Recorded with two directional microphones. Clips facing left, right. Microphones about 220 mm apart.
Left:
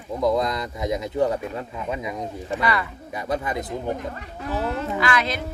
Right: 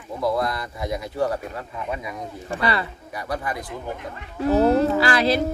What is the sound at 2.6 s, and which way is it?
Speech, 30° right (ahead or behind).